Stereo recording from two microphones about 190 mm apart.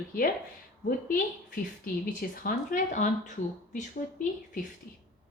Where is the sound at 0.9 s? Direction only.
45° left (ahead or behind).